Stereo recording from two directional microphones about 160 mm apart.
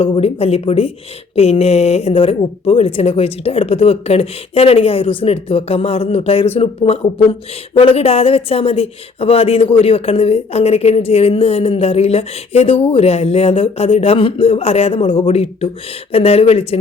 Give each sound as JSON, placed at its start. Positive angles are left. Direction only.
{"t": 0.0, "sound": "speech", "side_deg": 40}